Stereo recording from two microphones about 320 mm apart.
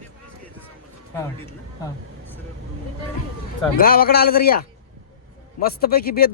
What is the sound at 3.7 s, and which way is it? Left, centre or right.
Speech, left.